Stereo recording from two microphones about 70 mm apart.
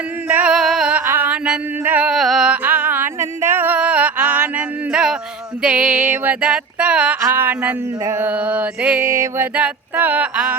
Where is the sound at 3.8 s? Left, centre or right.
Centre.